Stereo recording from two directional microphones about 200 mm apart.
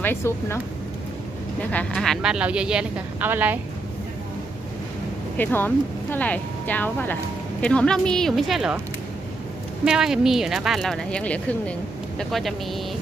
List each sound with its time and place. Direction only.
0.0 s speech: 10° left (ahead or behind)
1.7 s speech: 5° left (ahead or behind)
5.4 s speech: 10° left (ahead or behind)
9.8 s speech: 5° right (ahead or behind)